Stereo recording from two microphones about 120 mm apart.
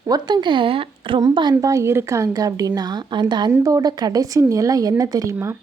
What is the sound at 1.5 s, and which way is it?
A woman's voice, 25° right (ahead or behind).